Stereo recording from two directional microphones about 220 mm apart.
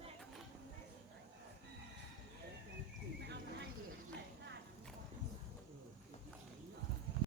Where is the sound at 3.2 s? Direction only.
50° right (ahead or behind).